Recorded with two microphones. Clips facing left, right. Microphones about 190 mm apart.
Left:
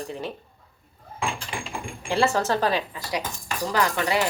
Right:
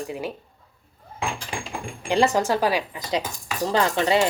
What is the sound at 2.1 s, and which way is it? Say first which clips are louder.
Speech: right 2 dB; 15° right (ahead or behind).